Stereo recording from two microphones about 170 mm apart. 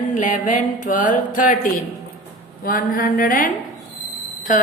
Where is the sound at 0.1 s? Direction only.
50° left (ahead or behind).